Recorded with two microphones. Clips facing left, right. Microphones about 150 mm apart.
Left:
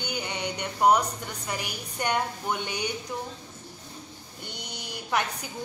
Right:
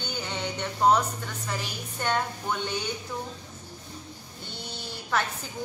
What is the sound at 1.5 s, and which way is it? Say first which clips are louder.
A woman's voice: left 1 dB; 15° left (ahead or behind).